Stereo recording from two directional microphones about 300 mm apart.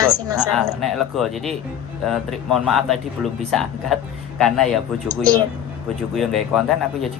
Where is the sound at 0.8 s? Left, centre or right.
Centre.